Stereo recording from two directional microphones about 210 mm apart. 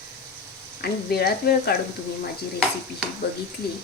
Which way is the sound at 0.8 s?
50° left (ahead or behind).